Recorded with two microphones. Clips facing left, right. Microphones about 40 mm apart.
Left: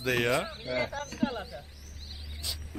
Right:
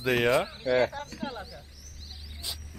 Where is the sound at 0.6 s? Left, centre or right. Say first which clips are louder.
Right 7 dB; right.